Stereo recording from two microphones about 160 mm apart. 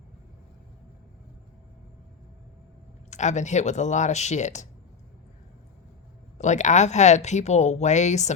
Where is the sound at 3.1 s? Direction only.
45° left (ahead or behind).